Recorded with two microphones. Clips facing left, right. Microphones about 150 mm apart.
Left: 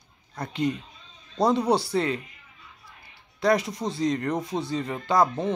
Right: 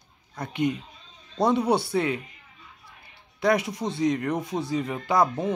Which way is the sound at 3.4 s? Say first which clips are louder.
Even; 5° right (ahead or behind).